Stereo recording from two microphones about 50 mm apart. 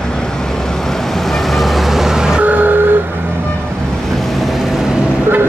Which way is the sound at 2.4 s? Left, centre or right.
Right.